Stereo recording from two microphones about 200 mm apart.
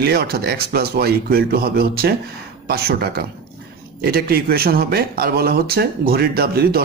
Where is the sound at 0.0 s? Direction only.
50° right (ahead or behind).